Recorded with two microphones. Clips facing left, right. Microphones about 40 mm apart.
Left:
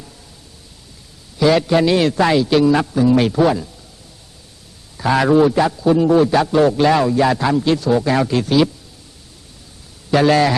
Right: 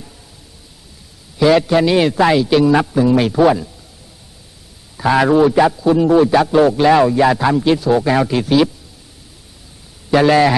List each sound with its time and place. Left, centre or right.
1.4 s a man's voice: centre
4.9 s a man's voice: centre
5.5 s a man's voice: centre
5.7 s a man's voice: centre
10.1 s a man's voice: centre